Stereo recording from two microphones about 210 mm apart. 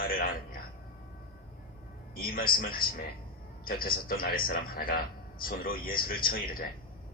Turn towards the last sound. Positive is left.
turn(degrees=45)  # may be behind; listen again after turning